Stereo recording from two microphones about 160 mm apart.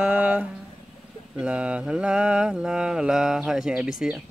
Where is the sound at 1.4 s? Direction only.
5° right (ahead or behind).